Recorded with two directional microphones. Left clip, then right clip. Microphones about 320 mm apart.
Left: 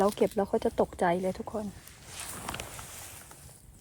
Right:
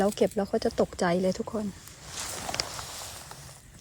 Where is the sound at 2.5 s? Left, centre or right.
Right.